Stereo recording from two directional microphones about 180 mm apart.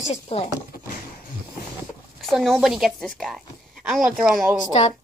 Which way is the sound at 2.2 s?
Centre (ahead or behind).